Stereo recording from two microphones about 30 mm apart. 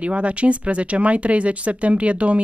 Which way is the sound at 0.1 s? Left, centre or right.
Right.